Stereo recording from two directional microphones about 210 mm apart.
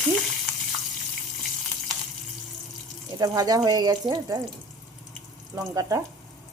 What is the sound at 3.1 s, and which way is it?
Speech, 20° right (ahead or behind).